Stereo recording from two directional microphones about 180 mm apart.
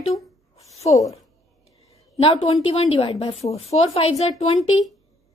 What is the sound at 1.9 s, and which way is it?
A woman's voice, 30° left (ahead or behind).